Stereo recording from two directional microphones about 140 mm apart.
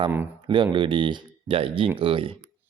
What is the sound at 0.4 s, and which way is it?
Speech, 35° right (ahead or behind).